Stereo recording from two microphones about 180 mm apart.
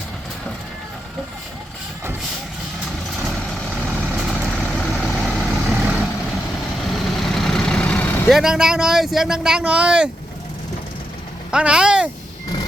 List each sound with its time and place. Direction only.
3.2 s vehicle: centre (ahead or behind)
8.3 s speech: 5° right (ahead or behind)
11.5 s speech: 5° right (ahead or behind)